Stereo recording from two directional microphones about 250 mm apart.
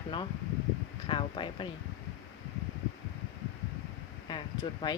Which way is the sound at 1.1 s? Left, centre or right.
Centre.